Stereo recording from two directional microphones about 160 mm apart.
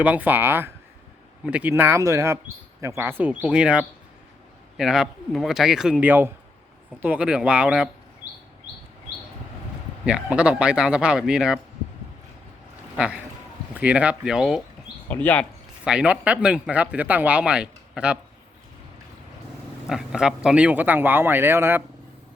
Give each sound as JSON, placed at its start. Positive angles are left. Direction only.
{"t": 0.0, "sound": "a man's voice", "side_deg": -10}
{"t": 10.1, "sound": "a man's voice", "side_deg": -5}
{"t": 13.0, "sound": "speech", "side_deg": -5}
{"t": 15.1, "sound": "speech", "side_deg": 10}
{"t": 15.8, "sound": "speech", "side_deg": -5}
{"t": 19.9, "sound": "speech", "side_deg": -5}